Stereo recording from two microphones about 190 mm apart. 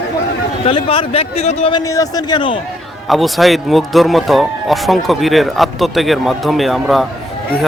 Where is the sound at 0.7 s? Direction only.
30° left (ahead or behind).